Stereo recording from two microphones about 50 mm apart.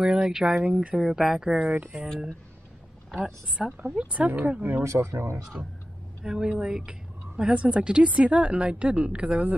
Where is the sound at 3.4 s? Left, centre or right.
Centre.